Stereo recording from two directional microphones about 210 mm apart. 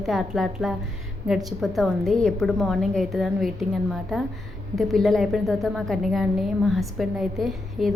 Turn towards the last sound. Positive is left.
turn(degrees=0)  # may be behind; listen again after turning